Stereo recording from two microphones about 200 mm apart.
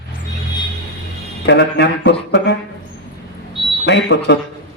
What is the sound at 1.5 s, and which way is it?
A man's voice, 60° left (ahead or behind).